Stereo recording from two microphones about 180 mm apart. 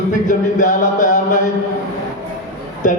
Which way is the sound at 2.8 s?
45° left (ahead or behind).